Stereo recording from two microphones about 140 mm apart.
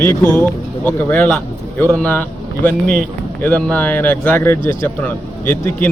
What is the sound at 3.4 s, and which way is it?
Speech, 10° left (ahead or behind).